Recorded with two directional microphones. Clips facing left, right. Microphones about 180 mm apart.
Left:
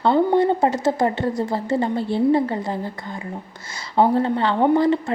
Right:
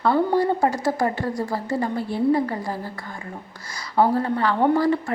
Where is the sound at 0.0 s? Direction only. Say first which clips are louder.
Left 3 dB; 20° left (ahead or behind).